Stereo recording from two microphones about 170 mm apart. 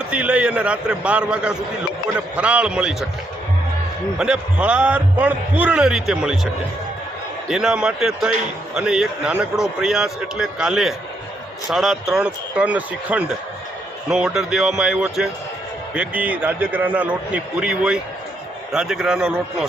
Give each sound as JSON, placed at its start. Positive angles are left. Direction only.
{"t": 0.1, "sound": "a man's voice", "side_deg": -5}
{"t": 4.2, "sound": "a man's voice", "side_deg": -5}